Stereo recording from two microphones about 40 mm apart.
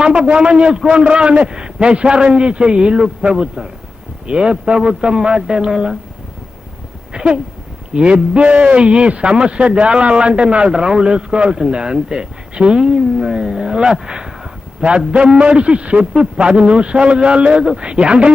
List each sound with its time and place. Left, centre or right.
0.0 s speech: right
7.1 s a sound: right
7.9 s speech: right